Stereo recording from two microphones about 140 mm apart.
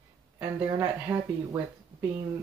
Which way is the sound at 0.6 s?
15° right (ahead or behind).